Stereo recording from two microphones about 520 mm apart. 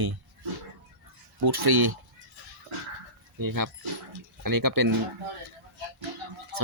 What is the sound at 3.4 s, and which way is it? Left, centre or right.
Speech, right.